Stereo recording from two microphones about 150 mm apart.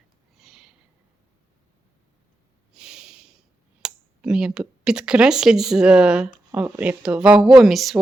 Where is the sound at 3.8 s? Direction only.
5° right (ahead or behind).